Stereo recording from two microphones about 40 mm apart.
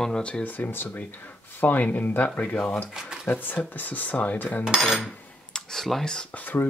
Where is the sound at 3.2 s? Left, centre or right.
Left.